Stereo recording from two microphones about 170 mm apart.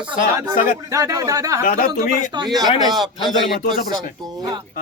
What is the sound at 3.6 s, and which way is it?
Speech, 55° left (ahead or behind).